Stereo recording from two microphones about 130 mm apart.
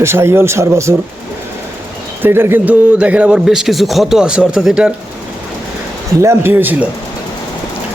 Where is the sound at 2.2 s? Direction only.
15° right (ahead or behind).